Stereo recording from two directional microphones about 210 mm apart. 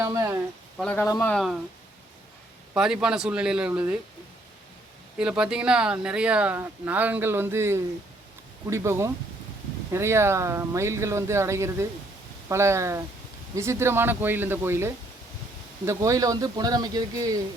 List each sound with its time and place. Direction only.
0.0 s speech: 15° right (ahead or behind)
0.8 s speech: 10° left (ahead or behind)
1.3 s speech: centre (ahead or behind)
2.7 s speech: 5° right (ahead or behind)
5.2 s speech: 5° right (ahead or behind)